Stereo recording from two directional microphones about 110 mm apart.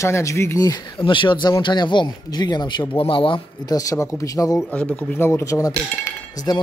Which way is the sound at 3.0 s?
55° left (ahead or behind).